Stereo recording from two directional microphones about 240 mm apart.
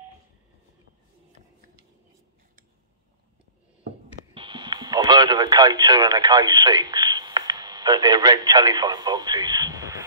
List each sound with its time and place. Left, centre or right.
4.3 s speech: right